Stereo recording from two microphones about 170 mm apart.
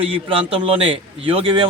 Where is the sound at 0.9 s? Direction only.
35° right (ahead or behind).